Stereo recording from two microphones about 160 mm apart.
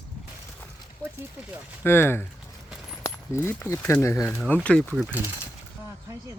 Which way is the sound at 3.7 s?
15° left (ahead or behind).